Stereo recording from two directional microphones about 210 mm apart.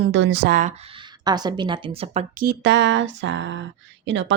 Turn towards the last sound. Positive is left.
turn(degrees=-60)  # may be behind; listen again after turning